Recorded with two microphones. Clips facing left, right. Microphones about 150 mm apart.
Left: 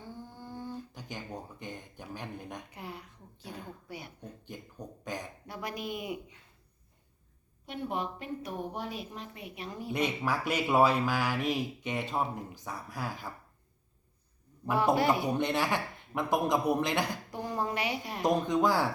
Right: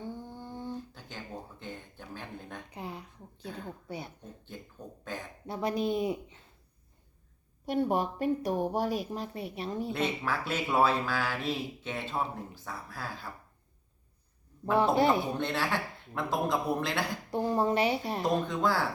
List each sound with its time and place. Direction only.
0.0 s humming: 20° right (ahead or behind)
0.9 s speech: 15° left (ahead or behind)
2.7 s speech: 20° right (ahead or behind)
4.5 s speech: 15° left (ahead or behind)
5.5 s speech: 30° right (ahead or behind)
7.6 s a woman's voice: 40° right (ahead or behind)
9.9 s speech: 15° left (ahead or behind)
14.9 s speech: 25° right (ahead or behind)
15.3 s speech: 15° left (ahead or behind)
17.3 s speech: 25° right (ahead or behind)
18.2 s speech: 20° left (ahead or behind)